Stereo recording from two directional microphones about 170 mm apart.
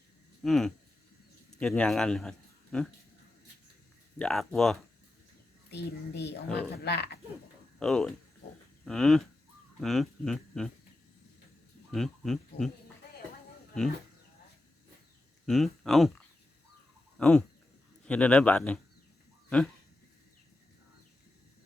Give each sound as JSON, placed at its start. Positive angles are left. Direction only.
{"t": 0.4, "sound": "speech", "side_deg": 0}
{"t": 4.2, "sound": "speech", "side_deg": 0}
{"t": 5.7, "sound": "a woman's voice", "side_deg": 80}
{"t": 6.8, "sound": "frog", "side_deg": 75}
{"t": 7.8, "sound": "speech", "side_deg": 5}
{"t": 11.9, "sound": "speech", "side_deg": 0}
{"t": 15.4, "sound": "speech", "side_deg": 0}
{"t": 17.2, "sound": "fowl", "side_deg": 5}
{"t": 18.0, "sound": "a man's voice", "side_deg": 5}